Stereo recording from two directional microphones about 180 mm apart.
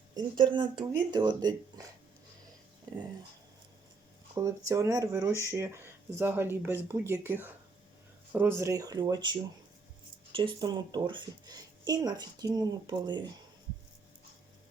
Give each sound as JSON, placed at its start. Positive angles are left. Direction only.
{"t": 0.2, "sound": "speech", "side_deg": -25}
{"t": 4.4, "sound": "speech", "side_deg": -15}